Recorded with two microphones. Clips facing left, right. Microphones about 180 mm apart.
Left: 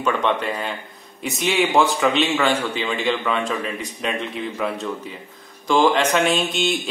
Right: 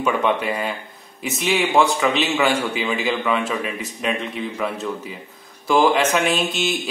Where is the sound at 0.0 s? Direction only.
5° right (ahead or behind).